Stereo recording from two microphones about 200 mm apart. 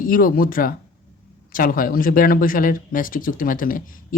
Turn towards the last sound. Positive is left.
turn(degrees=45)  # may be behind; listen again after turning